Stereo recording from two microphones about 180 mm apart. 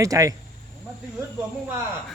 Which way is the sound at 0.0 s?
20° right (ahead or behind).